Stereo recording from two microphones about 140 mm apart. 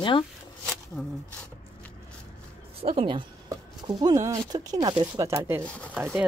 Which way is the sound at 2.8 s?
45° right (ahead or behind).